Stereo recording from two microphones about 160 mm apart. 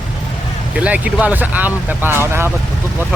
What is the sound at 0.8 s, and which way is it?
Speech, 5° right (ahead or behind).